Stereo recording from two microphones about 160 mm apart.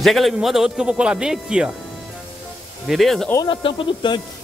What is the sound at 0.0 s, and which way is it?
Speech, centre (ahead or behind).